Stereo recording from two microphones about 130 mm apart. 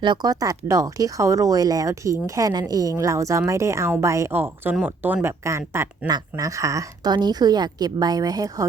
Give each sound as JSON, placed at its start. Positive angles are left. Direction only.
{"t": 0.0, "sound": "a woman's voice", "side_deg": -35}